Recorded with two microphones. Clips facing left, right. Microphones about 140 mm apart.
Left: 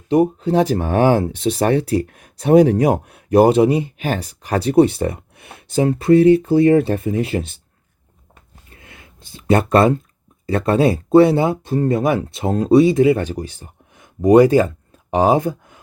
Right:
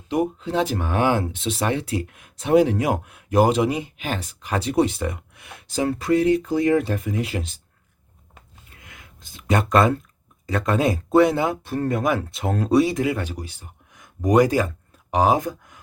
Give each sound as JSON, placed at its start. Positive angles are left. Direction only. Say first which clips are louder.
{"t": 0.1, "sound": "speech", "louder": "left 7 dB", "side_deg": 35}
{"t": 8.8, "sound": "a sound", "louder": "left 2 dB", "side_deg": 30}
{"t": 10.5, "sound": "speech", "louder": "left 5 dB", "side_deg": 30}